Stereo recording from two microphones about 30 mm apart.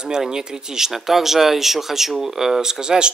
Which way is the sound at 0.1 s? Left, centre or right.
Right.